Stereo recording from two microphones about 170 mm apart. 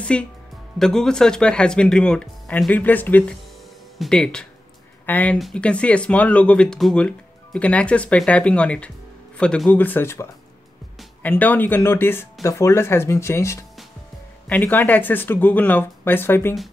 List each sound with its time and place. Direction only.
0.0 s speech: 5° left (ahead or behind)
11.2 s speech: 10° left (ahead or behind)